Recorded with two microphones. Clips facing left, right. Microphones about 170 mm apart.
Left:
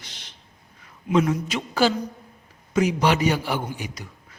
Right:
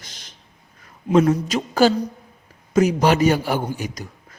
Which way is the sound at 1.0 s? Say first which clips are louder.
Right 5 dB; 35° right (ahead or behind).